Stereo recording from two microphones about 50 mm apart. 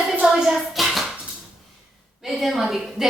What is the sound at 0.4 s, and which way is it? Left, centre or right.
Hands, centre.